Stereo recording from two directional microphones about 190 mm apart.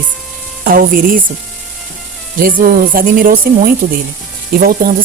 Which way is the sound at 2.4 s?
50° right (ahead or behind).